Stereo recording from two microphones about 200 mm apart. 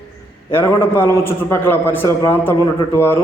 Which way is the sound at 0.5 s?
10° left (ahead or behind).